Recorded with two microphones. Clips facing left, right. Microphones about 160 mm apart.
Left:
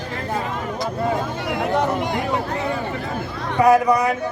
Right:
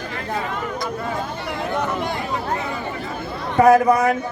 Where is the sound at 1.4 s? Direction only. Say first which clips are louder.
Left 3 dB; 15° left (ahead or behind).